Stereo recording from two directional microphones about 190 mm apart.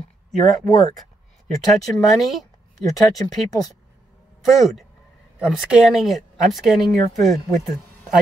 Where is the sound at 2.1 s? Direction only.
Centre (ahead or behind).